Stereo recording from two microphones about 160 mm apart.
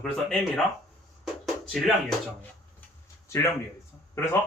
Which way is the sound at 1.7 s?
Centre (ahead or behind).